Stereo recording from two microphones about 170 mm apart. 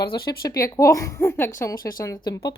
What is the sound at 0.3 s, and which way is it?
A woman's voice, 20° left (ahead or behind).